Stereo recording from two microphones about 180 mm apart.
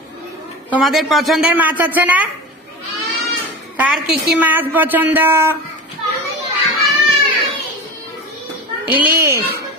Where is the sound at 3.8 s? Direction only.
5° right (ahead or behind).